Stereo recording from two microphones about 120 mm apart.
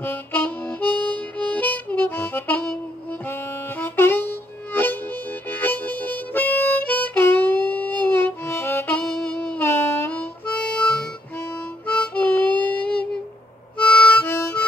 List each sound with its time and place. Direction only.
0.0 s harmonica: 15° left (ahead or behind)
9.0 s saxophone: 5° left (ahead or behind)
9.7 s harmonica: 20° left (ahead or behind)